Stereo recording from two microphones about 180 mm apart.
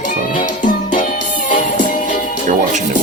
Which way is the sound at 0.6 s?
45° left (ahead or behind).